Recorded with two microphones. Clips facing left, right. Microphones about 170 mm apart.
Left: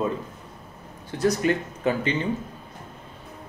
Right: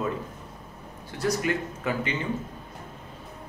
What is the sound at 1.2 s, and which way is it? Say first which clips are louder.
Speech: left 4 dB; 30° left (ahead or behind).